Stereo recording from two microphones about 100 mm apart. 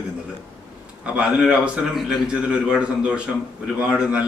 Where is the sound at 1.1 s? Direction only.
10° right (ahead or behind).